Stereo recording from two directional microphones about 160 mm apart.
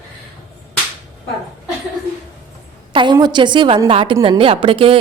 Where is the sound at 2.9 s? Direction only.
30° right (ahead or behind).